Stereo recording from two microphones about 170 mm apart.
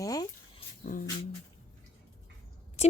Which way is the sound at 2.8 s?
40° left (ahead or behind).